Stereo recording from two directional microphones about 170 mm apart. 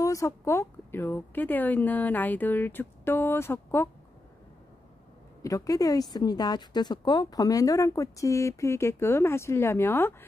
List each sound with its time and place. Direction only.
0.0 s a woman's voice: 20° left (ahead or behind)
5.4 s speech: 20° left (ahead or behind)